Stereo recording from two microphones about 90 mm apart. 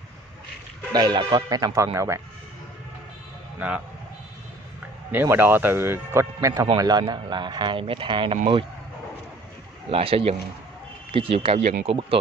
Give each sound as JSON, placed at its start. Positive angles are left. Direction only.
{"t": 0.9, "sound": "speech", "side_deg": -50}
{"t": 2.0, "sound": "speech", "side_deg": -35}
{"t": 3.5, "sound": "speech", "side_deg": -15}
{"t": 5.1, "sound": "speech", "side_deg": -25}
{"t": 6.8, "sound": "speech", "side_deg": -50}
{"t": 9.8, "sound": "speech", "side_deg": -90}